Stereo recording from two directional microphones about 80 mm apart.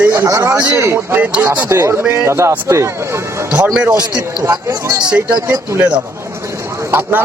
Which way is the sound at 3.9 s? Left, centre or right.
Right.